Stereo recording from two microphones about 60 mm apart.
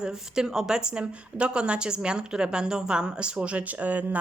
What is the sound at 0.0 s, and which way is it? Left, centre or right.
A woman's voice, centre.